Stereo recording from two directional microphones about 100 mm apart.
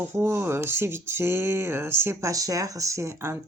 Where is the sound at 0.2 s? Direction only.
25° right (ahead or behind).